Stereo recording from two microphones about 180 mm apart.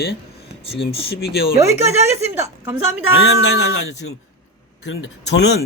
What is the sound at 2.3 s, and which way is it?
Speech, 10° right (ahead or behind).